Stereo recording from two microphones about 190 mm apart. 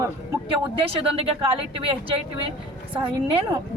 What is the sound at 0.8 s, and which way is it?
Speech, 30° right (ahead or behind).